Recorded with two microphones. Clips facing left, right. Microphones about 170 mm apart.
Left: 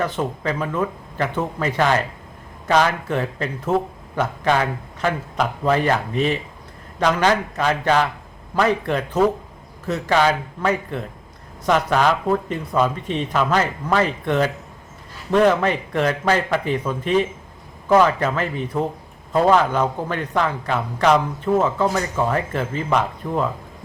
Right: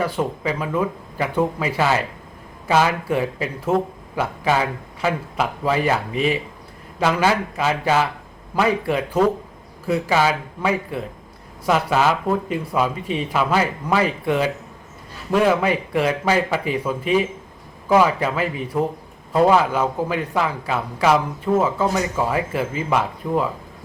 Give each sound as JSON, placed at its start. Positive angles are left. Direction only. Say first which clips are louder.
{"t": 0.0, "sound": "speech", "louder": "right 1 dB", "side_deg": -10}